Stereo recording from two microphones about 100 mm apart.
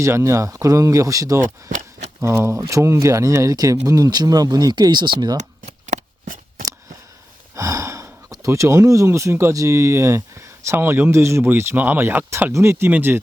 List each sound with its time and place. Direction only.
0.0 s speech: 30° right (ahead or behind); by 5.4 s 45° right (ahead or behind)
7.5 s speech: 30° right (ahead or behind)